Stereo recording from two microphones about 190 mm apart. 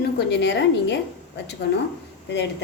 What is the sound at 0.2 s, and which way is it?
Speech, 65° left (ahead or behind).